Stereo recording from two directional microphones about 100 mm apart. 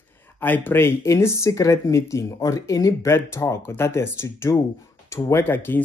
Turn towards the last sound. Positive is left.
turn(degrees=20)  # may be behind; listen again after turning